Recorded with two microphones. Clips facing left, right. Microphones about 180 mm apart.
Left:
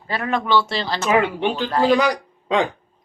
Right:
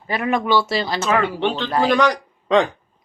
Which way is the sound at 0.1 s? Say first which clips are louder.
Right 1 dB; 15° right (ahead or behind).